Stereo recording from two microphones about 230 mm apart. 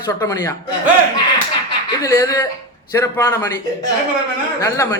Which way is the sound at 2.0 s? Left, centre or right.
Centre.